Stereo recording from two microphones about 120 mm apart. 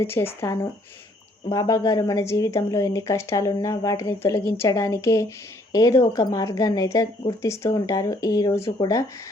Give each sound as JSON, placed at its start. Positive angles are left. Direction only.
{"t": 0.0, "sound": "a woman's voice", "side_deg": 20}